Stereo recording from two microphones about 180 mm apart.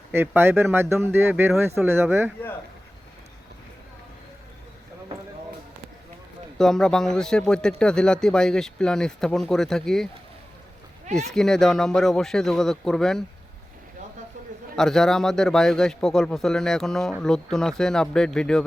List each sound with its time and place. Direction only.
0.1 s speech: 15° right (ahead or behind)
6.6 s a man's voice: 5° left (ahead or behind)
11.3 s a man's voice: 5° left (ahead or behind)
14.8 s a man's voice: centre (ahead or behind)